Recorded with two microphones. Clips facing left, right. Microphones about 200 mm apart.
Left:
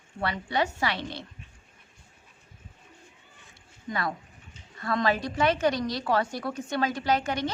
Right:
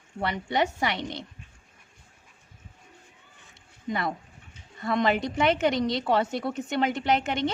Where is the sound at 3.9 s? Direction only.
20° right (ahead or behind).